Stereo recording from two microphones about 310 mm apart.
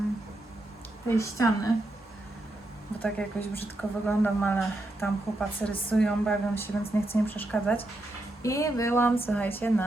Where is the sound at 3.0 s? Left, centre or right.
Centre.